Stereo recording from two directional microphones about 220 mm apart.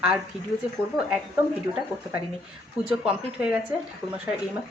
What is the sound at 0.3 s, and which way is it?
Speech, 5° right (ahead or behind).